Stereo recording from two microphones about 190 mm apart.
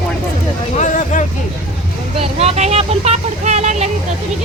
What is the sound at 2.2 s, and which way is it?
Speech, 30° right (ahead or behind).